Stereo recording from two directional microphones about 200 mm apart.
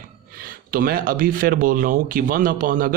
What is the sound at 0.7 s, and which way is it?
Speech, 45° right (ahead or behind).